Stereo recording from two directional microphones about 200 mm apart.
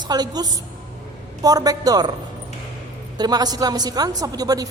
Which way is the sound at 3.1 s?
20° right (ahead or behind).